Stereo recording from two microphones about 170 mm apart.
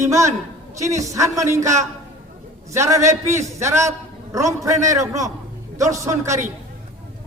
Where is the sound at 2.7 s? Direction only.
15° right (ahead or behind).